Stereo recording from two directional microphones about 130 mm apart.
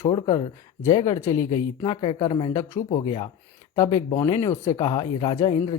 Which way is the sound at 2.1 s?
30° left (ahead or behind).